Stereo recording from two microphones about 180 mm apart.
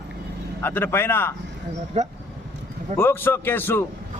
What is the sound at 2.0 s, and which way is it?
Speech, 40° right (ahead or behind).